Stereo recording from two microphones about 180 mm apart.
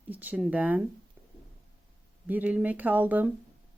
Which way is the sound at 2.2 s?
10° right (ahead or behind).